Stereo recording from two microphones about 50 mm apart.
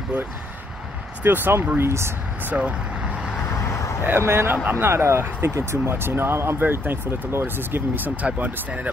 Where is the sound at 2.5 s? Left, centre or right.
Right.